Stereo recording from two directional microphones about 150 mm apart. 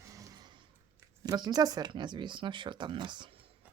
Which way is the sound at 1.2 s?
25° right (ahead or behind).